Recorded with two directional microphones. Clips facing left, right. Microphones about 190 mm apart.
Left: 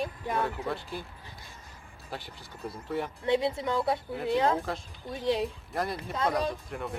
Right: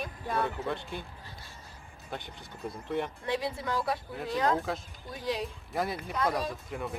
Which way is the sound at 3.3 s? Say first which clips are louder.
Left 9 dB; 25° left (ahead or behind).